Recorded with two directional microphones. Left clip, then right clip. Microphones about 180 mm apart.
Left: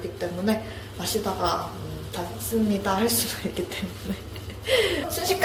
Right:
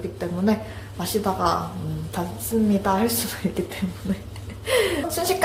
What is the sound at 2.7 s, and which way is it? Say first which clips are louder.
Speech: right 3 dB; 30° right (ahead or behind).